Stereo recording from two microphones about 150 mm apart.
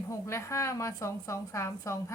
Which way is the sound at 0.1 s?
20° left (ahead or behind).